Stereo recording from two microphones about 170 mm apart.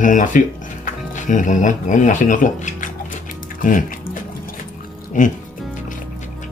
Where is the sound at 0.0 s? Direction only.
50° left (ahead or behind).